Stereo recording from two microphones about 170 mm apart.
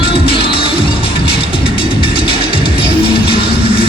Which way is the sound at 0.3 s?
30° left (ahead or behind).